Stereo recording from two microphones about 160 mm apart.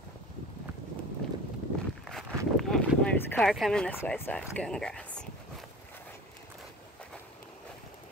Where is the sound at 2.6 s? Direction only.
Centre (ahead or behind).